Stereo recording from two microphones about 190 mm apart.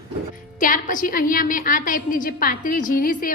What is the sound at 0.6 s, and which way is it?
A woman's voice, 45° left (ahead or behind).